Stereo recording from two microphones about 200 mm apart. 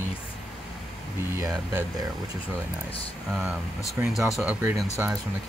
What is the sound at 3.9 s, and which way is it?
Speech, centre (ahead or behind).